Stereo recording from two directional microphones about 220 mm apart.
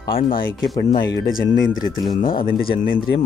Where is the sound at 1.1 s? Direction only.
40° left (ahead or behind).